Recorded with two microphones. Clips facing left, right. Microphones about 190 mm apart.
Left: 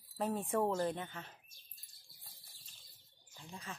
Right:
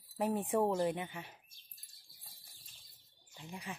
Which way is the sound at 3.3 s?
15° right (ahead or behind).